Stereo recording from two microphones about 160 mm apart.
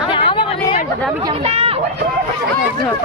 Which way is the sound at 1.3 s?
35° right (ahead or behind).